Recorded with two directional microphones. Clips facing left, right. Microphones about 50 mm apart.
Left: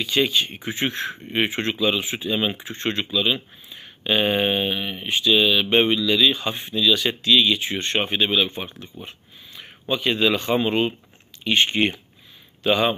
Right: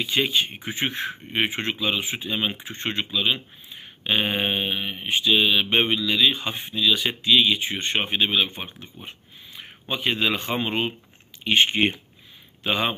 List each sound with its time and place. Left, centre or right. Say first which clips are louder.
0.0 s speech: left 2 dB; centre
9.0 s a sound: left 1 dB; right
10.6 s speech: left 4 dB; centre
11.4 s speech: even; right